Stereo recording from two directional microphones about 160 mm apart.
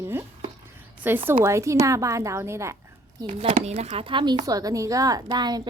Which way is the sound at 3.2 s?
35° right (ahead or behind).